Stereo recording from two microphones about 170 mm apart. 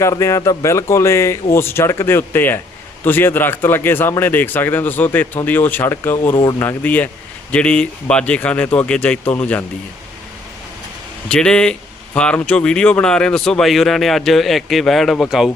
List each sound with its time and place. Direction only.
0.0 s speech: 15° left (ahead or behind)
6.3 s speech: 25° left (ahead or behind)
6.6 s speech: 10° left (ahead or behind)
11.3 s speech: 5° left (ahead or behind)